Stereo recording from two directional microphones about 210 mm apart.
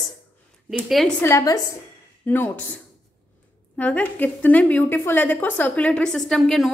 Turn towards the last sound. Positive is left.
turn(degrees=0)  # may be behind; listen again after turning